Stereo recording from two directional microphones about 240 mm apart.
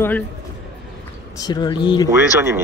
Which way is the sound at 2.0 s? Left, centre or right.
Centre.